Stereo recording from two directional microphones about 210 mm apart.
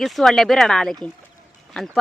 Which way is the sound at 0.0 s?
Centre (ahead or behind).